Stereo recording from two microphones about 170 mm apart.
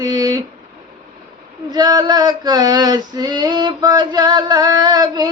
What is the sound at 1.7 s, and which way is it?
Female singing, 25° right (ahead or behind).